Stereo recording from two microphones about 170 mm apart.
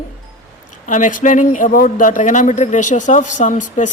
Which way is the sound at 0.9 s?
50° left (ahead or behind).